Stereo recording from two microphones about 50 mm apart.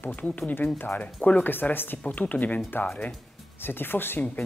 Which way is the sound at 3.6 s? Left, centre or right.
Left.